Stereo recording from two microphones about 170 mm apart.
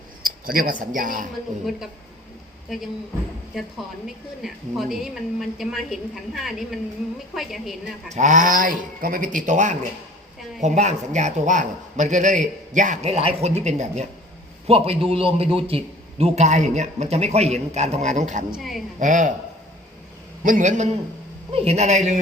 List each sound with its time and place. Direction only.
0.2 s speech: 55° right (ahead or behind)
2.6 s a woman's voice: centre (ahead or behind)
8.1 s a man's voice: 45° right (ahead or behind)
20.4 s a man's voice: 50° right (ahead or behind)
21.5 s a man's voice: 35° right (ahead or behind)